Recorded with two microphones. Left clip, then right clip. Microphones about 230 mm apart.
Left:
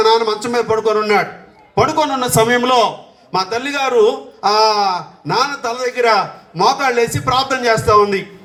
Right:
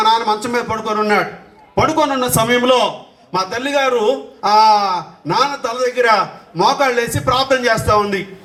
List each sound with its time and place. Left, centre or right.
0.0 s speech: left